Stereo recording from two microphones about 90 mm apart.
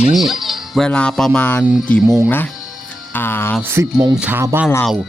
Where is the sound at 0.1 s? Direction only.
Centre (ahead or behind).